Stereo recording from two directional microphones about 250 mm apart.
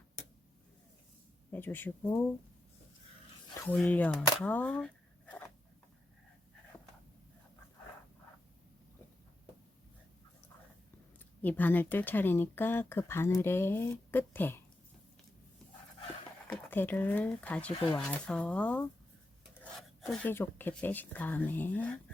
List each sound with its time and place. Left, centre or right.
1.5 s speech: centre
3.7 s speech: centre
11.4 s speech: centre
16.5 s speech: centre
17.7 s speech: left
18.1 s speech: centre
20.0 s speech: centre